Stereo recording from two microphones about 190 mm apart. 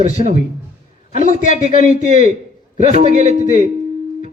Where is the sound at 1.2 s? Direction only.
45° left (ahead or behind).